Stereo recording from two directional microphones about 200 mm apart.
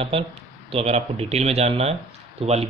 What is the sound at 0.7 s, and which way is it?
Speech, 30° right (ahead or behind).